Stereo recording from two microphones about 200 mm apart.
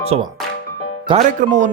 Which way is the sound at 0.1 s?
30° right (ahead or behind).